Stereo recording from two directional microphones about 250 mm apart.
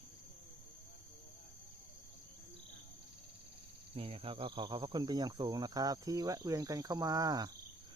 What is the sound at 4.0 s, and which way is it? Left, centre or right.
Speech, right.